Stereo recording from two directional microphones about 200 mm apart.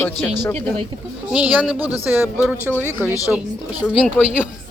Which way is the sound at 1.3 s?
5° right (ahead or behind).